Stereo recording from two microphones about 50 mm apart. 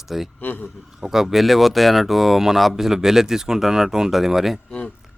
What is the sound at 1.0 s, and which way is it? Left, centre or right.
Speech, centre.